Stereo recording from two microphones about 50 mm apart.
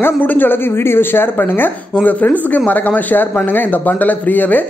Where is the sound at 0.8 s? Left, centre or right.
Left.